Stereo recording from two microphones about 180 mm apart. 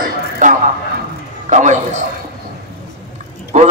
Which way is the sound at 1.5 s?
40° right (ahead or behind).